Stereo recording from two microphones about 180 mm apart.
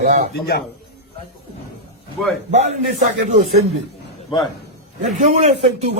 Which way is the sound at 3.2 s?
40° right (ahead or behind).